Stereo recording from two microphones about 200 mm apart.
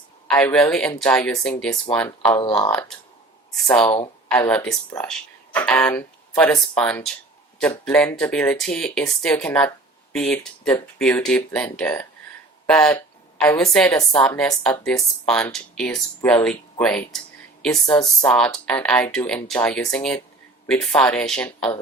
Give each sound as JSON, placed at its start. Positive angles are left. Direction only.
{"t": 0.3, "sound": "speech", "side_deg": 5}
{"t": 2.4, "sound": "speech", "side_deg": 25}
{"t": 3.8, "sound": "speech", "side_deg": 20}
{"t": 4.4, "sound": "speech", "side_deg": 5}
{"t": 18.2, "sound": "speech", "side_deg": 5}